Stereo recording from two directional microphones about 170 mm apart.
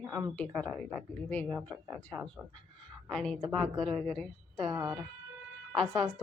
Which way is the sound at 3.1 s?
5° left (ahead or behind).